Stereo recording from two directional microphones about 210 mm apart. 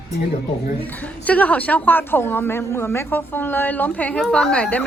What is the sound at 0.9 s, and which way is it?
A woman's voice, 5° left (ahead or behind).